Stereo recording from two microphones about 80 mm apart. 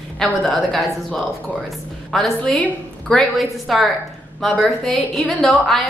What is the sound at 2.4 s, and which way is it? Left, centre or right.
Speech, centre.